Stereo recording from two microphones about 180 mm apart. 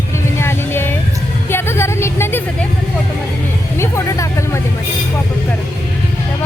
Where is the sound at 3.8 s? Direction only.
15° left (ahead or behind).